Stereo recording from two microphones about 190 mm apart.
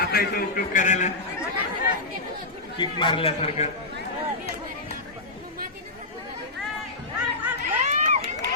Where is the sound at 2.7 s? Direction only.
25° left (ahead or behind).